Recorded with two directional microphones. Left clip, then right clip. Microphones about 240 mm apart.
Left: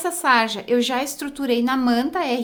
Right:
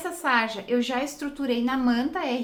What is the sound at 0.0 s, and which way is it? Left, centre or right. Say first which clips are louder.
A woman's voice: left 6 dB; left.